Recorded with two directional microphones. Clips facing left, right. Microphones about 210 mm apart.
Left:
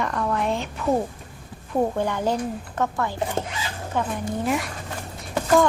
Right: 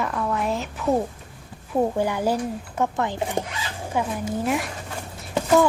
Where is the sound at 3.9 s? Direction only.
5° right (ahead or behind).